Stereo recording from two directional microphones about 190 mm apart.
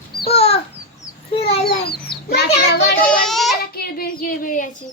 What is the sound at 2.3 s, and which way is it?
Child singing, 55° left (ahead or behind).